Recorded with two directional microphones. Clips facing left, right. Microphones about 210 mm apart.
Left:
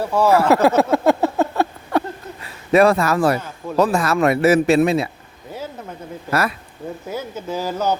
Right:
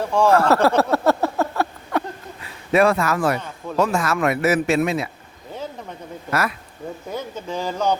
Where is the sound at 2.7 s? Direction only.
35° left (ahead or behind).